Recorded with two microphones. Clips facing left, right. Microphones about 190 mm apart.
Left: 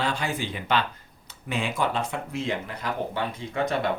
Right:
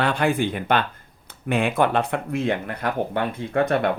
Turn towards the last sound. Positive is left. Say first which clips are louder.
# right 6 dB
turn(degrees=-55)  # may be behind; listen again after turning